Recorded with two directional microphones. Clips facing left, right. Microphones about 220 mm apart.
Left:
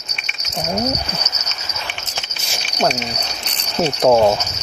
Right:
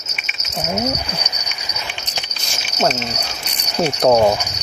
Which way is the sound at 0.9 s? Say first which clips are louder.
Even; 15° right (ahead or behind).